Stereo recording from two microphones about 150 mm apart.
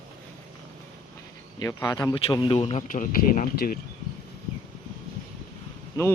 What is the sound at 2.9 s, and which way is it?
Speech, 65° left (ahead or behind).